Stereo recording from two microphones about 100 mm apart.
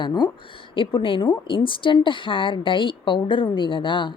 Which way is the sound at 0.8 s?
60° left (ahead or behind).